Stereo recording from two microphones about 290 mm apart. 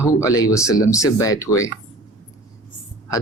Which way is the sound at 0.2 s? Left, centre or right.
Centre.